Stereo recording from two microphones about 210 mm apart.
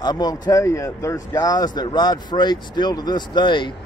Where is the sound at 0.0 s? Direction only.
20° left (ahead or behind).